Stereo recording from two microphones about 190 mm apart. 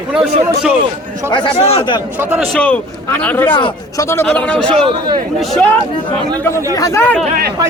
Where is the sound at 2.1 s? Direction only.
10° right (ahead or behind).